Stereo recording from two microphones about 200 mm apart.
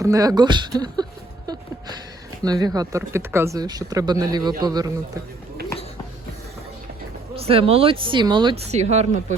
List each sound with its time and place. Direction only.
0.0 s speech: 15° right (ahead or behind)
2.4 s speech: 20° right (ahead or behind)
7.3 s speech: 30° right (ahead or behind)